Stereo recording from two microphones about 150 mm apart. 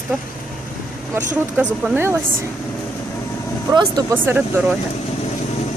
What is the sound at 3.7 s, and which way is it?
Speech, 25° right (ahead or behind).